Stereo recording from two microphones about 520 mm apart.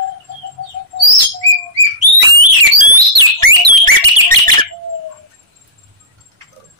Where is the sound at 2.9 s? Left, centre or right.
Right.